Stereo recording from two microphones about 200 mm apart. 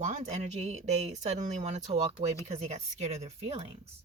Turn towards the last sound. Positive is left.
turn(degrees=-30)  # may be behind; listen again after turning